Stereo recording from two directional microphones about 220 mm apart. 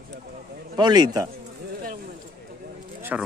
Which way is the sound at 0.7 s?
20° right (ahead or behind).